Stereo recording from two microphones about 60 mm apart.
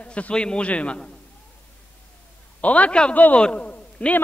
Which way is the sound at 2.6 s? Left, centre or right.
Left.